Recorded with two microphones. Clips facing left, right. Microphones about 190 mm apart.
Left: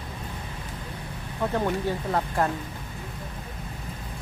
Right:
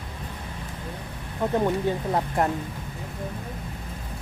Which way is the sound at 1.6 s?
20° right (ahead or behind).